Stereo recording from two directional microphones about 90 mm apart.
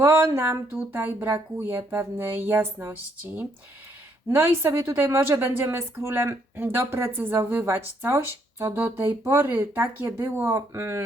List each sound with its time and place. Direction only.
0.0 s a woman's voice: 25° right (ahead or behind)
4.3 s a woman's voice: 25° right (ahead or behind)